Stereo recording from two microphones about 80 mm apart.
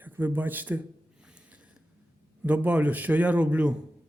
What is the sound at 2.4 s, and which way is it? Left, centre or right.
A man's voice, centre.